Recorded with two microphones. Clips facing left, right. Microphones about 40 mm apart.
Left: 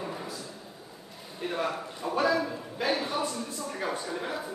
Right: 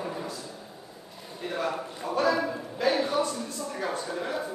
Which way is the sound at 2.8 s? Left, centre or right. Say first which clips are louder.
Right 4 dB; centre.